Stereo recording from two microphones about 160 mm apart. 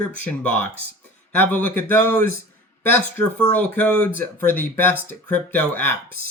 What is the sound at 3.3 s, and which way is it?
Speech, 10° left (ahead or behind).